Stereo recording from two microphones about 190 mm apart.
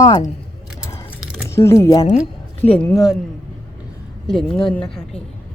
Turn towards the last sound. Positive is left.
turn(degrees=5)  # may be behind; listen again after turning